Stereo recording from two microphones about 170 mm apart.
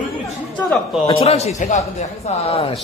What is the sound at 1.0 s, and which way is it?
Speech, 35° left (ahead or behind).